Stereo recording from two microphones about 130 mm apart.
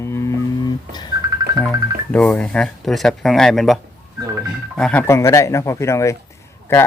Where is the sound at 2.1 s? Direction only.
10° left (ahead or behind).